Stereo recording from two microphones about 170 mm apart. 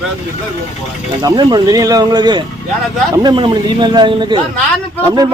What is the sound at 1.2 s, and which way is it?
A man's voice, 25° right (ahead or behind).